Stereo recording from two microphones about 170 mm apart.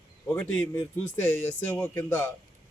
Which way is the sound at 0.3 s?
5° left (ahead or behind).